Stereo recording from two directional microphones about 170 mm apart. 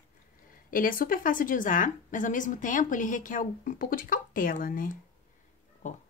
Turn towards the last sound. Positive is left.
turn(degrees=45)  # may be behind; listen again after turning